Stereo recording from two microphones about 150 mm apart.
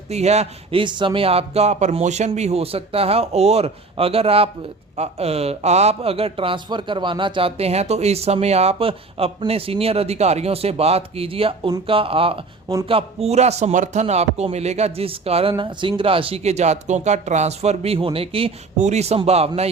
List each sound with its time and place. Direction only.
0.1 s a man's voice: 45° right (ahead or behind)